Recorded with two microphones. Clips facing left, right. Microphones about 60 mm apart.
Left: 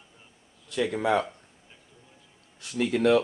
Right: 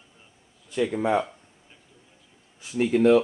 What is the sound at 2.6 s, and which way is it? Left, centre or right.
Speech, left.